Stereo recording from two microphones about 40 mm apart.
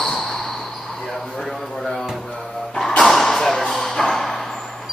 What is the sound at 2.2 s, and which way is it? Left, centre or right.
Music, centre.